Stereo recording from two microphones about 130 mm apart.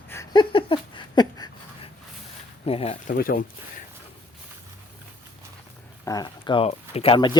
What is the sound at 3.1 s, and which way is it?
Speech, 90° left.